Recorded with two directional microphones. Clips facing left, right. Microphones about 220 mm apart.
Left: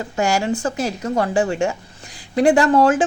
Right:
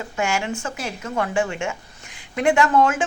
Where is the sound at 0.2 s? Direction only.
35° left (ahead or behind).